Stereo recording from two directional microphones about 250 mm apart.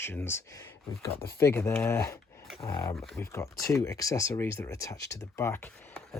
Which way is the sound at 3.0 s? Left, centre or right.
Centre.